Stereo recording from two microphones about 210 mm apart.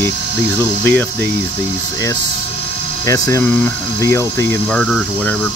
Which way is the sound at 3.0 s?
15° left (ahead or behind).